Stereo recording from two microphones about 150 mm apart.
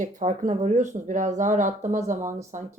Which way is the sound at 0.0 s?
60° right (ahead or behind).